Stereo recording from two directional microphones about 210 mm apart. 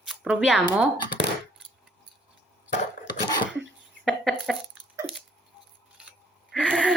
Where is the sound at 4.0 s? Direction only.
Centre (ahead or behind).